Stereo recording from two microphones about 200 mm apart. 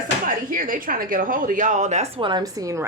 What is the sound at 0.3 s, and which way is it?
Speech, 45° right (ahead or behind).